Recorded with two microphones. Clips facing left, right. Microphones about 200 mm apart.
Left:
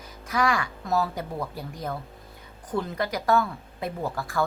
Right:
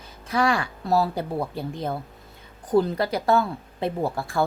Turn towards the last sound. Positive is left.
turn(degrees=-30)  # may be behind; listen again after turning